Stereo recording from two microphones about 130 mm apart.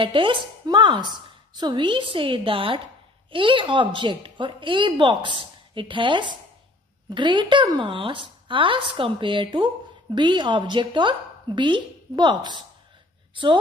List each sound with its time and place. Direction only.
0.0 s a woman's voice: 40° right (ahead or behind)